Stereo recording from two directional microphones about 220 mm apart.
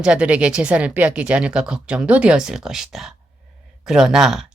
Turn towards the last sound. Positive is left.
turn(degrees=0)  # may be behind; listen again after turning